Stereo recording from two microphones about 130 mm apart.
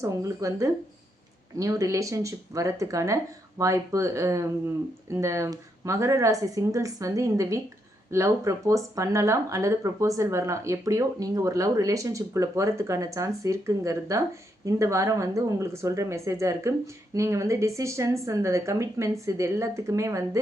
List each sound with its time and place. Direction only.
0.0 s speech: 25° right (ahead or behind)